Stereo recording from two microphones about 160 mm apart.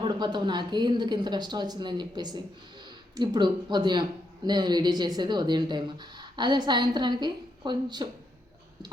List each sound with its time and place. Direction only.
0.0 s speech: 25° right (ahead or behind)